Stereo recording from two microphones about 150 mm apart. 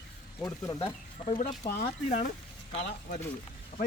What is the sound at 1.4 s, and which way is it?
Speech, 55° left (ahead or behind).